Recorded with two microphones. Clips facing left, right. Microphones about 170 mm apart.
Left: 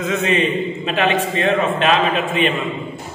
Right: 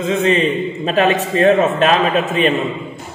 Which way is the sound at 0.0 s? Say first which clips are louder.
Right 3 dB; 30° right (ahead or behind).